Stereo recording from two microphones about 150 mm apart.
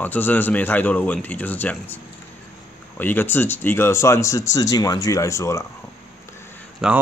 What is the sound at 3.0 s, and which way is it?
Speech, 15° left (ahead or behind).